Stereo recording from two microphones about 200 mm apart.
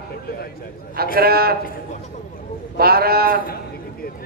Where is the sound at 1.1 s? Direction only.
50° right (ahead or behind).